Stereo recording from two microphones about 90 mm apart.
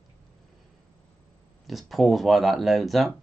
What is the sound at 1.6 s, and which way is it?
Speech, centre (ahead or behind).